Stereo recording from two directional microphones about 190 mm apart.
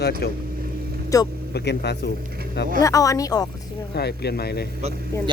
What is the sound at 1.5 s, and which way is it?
Speech, 60° left (ahead or behind).